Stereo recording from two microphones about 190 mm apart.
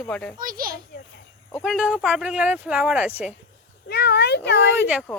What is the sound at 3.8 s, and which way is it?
Speech, 60° left (ahead or behind).